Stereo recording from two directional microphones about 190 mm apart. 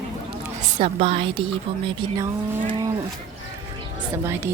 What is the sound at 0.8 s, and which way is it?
Speech, 35° right (ahead or behind).